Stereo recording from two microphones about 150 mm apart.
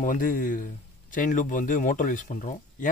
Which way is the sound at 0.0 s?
65° left (ahead or behind).